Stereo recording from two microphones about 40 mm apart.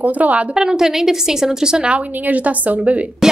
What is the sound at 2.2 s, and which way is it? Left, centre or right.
Speech, right.